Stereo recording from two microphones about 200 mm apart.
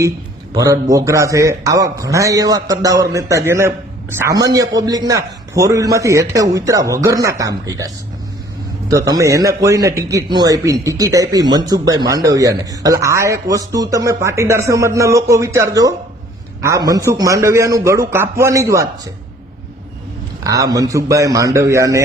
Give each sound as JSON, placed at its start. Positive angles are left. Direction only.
{"t": 0.5, "sound": "a man's voice", "side_deg": -15}
{"t": 20.4, "sound": "a man's voice", "side_deg": -15}